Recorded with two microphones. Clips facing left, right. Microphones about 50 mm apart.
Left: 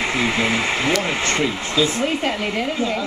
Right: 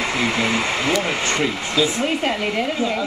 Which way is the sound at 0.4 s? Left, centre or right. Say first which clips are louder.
Left 1 dB; left.